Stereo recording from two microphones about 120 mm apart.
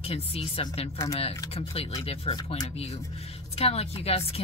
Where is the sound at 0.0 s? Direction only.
55° left (ahead or behind).